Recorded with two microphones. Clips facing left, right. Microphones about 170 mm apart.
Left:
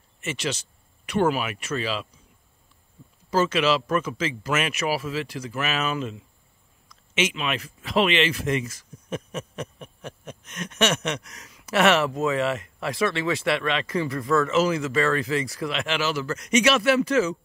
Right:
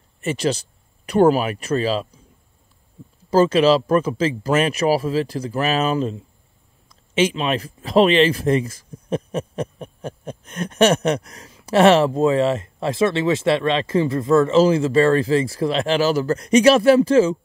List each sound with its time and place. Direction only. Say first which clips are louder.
0.2 s a man's voice: right 8 dB; 35° right (ahead or behind)
3.3 s a man's voice: right 7 dB; 35° right (ahead or behind)